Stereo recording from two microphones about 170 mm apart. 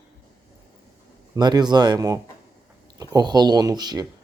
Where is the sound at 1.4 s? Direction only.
25° right (ahead or behind).